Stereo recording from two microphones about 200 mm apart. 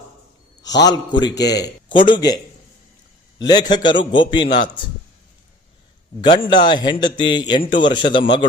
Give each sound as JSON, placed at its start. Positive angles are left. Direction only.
{"t": 0.7, "sound": "a man's voice", "side_deg": 20}
{"t": 6.2, "sound": "a man's voice", "side_deg": 20}